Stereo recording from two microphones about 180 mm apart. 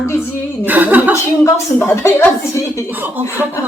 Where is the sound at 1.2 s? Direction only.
15° left (ahead or behind).